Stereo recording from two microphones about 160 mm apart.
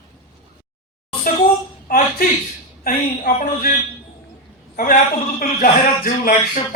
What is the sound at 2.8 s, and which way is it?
Speech, 60° left (ahead or behind).